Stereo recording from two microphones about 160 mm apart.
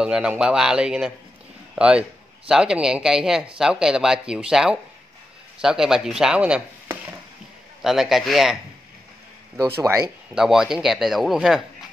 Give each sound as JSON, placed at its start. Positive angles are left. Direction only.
{"t": 0.0, "sound": "a man's voice", "side_deg": -5}
{"t": 9.6, "sound": "speech", "side_deg": -15}
{"t": 10.3, "sound": "a man's voice", "side_deg": -5}